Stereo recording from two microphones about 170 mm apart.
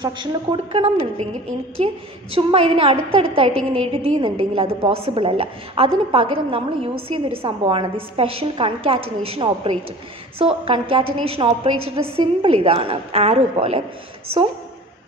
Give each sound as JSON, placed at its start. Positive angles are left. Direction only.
{"t": 0.0, "sound": "a woman's voice", "side_deg": -25}